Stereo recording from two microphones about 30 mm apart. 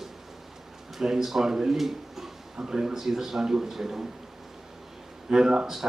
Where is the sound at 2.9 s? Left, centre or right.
Centre.